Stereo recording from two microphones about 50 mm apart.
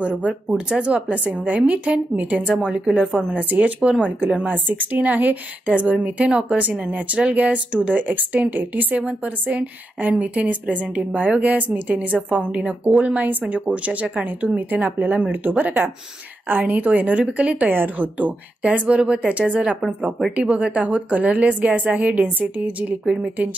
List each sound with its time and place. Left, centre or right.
0.0 s speech: right
3.3 s speech: right
4.5 s speech: right
17.6 s speech: right